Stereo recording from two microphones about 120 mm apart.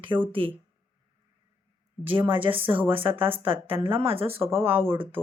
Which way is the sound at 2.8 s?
50° right (ahead or behind).